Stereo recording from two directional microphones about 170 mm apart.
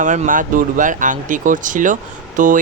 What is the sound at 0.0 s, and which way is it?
Speech, 50° right (ahead or behind).